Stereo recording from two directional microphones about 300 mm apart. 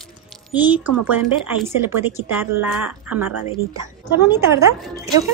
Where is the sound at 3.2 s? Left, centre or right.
Right.